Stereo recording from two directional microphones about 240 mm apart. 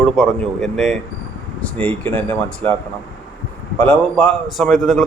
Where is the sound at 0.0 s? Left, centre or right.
Centre.